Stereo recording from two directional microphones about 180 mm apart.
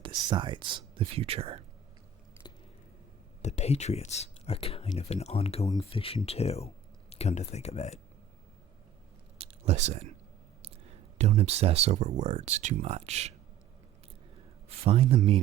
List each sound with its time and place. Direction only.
0.0 s speech: 25° right (ahead or behind)
3.4 s speech: 35° left (ahead or behind)
9.4 s a sound: 35° right (ahead or behind)
10.6 s speech: 35° right (ahead or behind)
14.8 s speech: 35° right (ahead or behind)